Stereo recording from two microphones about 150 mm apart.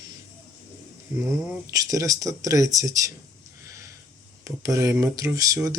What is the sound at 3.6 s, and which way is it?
Sniff, 20° right (ahead or behind).